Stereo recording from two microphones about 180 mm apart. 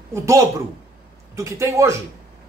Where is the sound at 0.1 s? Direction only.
15° right (ahead or behind).